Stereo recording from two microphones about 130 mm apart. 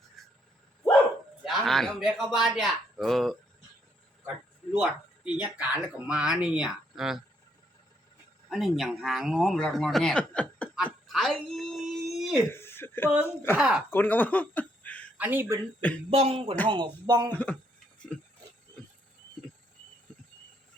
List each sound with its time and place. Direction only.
1.5 s speech: centre (ahead or behind)
4.8 s speech: 10° right (ahead or behind)
8.4 s speech: centre (ahead or behind)
10.8 s a sound: 5° right (ahead or behind)
12.5 s a sound: 20° left (ahead or behind)
13.2 s speech: 15° left (ahead or behind)
13.6 s speech: 5° right (ahead or behind)
13.9 s speech: 15° left (ahead or behind)
15.2 s speech: 15° right (ahead or behind)
16.0 s a sound: 50° right (ahead or behind)
16.6 s speech: 40° right (ahead or behind)
17.3 s speech: 10° left (ahead or behind)
18.1 s a sound: 10° left (ahead or behind)